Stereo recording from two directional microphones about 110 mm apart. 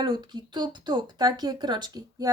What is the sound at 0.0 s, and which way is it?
Speech, 40° right (ahead or behind).